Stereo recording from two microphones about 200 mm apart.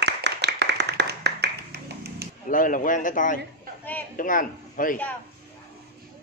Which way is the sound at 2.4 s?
40° left (ahead or behind).